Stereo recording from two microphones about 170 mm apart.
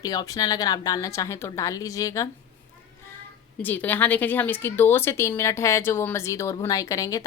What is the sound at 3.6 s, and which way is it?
A woman's voice, 10° left (ahead or behind).